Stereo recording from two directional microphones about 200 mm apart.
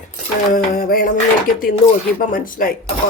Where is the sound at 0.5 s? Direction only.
45° left (ahead or behind).